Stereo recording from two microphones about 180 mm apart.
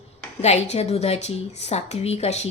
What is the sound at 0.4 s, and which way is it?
A woman's voice, 35° left (ahead or behind).